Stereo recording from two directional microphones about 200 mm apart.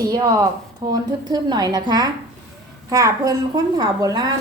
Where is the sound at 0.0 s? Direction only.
20° right (ahead or behind).